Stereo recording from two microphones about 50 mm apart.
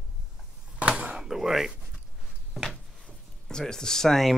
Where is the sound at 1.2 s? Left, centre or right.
Centre.